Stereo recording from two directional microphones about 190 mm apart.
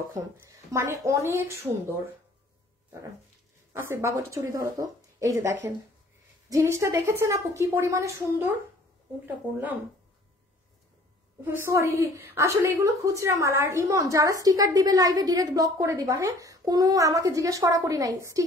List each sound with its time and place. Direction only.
0.1 s a woman's voice: 15° right (ahead or behind)
3.7 s a woman's voice: 15° right (ahead or behind)
11.4 s a woman's voice: 10° right (ahead or behind)